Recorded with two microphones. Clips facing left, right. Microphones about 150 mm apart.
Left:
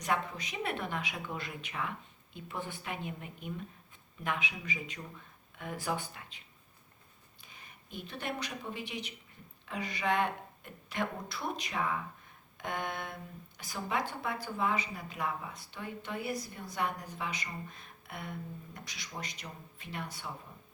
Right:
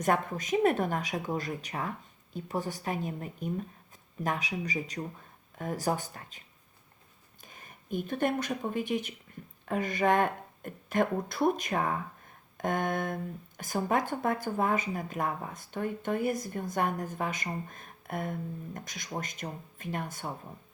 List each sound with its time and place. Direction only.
0.0 s a woman's voice: 50° right (ahead or behind)
7.4 s speech: 45° right (ahead or behind)
12.5 s a sound: 45° right (ahead or behind)
13.6 s speech: 50° right (ahead or behind)